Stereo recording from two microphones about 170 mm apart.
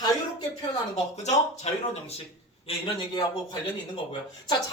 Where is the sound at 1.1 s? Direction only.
40° left (ahead or behind).